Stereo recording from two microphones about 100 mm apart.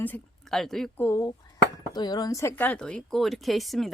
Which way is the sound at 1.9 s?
45° left (ahead or behind).